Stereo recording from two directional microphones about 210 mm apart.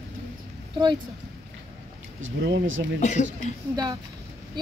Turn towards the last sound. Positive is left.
turn(degrees=-20)  # may be behind; listen again after turning